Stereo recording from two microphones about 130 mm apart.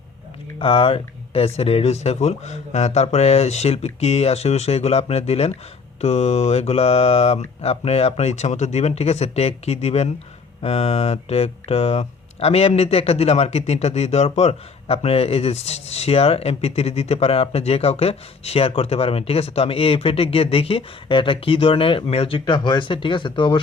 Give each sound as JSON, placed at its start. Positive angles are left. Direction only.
{"t": 0.6, "sound": "speech", "side_deg": 45}